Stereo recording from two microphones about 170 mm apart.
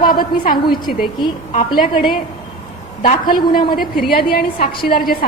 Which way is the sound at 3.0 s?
55° left (ahead or behind).